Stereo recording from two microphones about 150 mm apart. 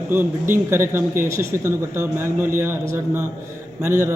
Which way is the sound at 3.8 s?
15° right (ahead or behind).